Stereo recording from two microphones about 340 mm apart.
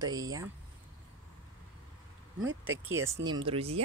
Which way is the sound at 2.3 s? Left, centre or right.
Right.